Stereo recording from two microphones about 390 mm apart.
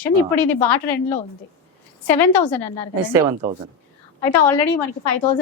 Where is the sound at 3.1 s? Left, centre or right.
Centre.